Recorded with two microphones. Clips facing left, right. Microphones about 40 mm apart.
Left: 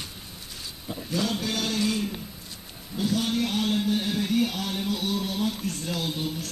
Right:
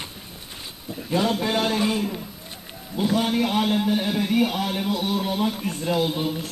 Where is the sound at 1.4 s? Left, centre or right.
Right.